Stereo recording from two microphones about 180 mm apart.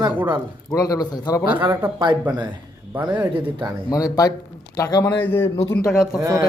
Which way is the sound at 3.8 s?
20° left (ahead or behind).